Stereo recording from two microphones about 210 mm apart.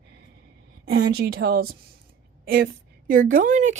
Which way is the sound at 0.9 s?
45° right (ahead or behind).